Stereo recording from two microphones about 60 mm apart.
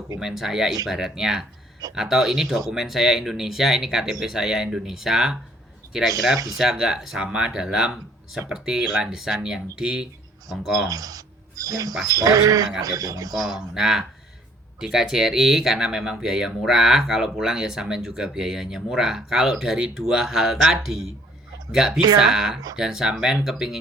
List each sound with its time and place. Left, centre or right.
0.2 s speech: centre
10.8 s speech: right
13.5 s speech: centre